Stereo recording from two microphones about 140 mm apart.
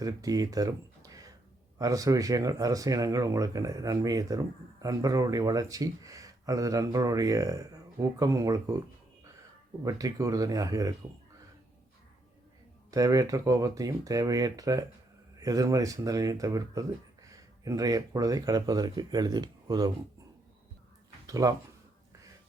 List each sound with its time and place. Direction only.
0.0 s speech: 25° right (ahead or behind)
9.8 s speech: 25° right (ahead or behind)
12.9 s speech: 25° right (ahead or behind)
21.2 s speech: 25° right (ahead or behind)